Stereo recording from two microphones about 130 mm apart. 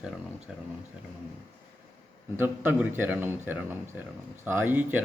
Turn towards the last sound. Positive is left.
turn(degrees=-15)  # may be behind; listen again after turning